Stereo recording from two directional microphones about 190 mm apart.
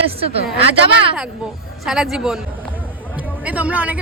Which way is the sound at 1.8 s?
Centre (ahead or behind).